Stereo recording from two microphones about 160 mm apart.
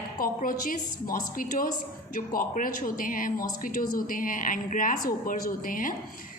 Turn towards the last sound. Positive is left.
turn(degrees=60)  # may be behind; listen again after turning